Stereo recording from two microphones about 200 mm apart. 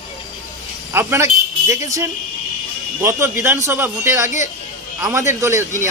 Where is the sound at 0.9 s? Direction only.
10° right (ahead or behind).